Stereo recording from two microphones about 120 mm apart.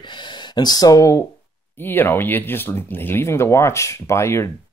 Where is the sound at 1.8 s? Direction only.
15° left (ahead or behind).